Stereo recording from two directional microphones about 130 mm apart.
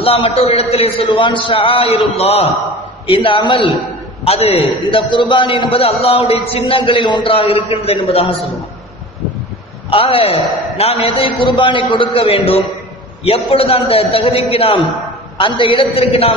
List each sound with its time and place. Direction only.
0.0 s a man's voice: 45° left (ahead or behind)
4.2 s a man's voice: 50° left (ahead or behind)
9.8 s a man's voice: 45° left (ahead or behind)